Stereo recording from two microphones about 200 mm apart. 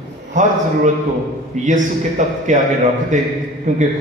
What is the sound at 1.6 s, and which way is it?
A man's voice, 40° right (ahead or behind).